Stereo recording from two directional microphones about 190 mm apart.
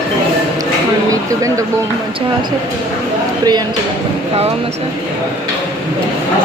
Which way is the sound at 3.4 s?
20° right (ahead or behind).